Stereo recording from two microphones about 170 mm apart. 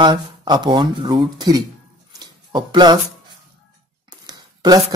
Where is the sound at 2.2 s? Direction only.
25° right (ahead or behind).